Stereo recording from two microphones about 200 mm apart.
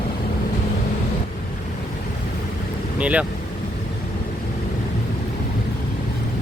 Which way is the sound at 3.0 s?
5° right (ahead or behind).